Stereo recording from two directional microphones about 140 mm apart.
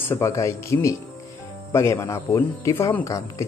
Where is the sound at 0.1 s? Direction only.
20° left (ahead or behind).